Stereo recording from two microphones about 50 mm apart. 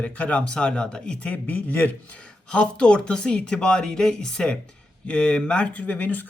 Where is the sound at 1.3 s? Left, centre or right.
Left.